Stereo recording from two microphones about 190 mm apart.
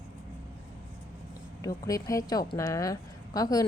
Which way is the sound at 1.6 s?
15° left (ahead or behind).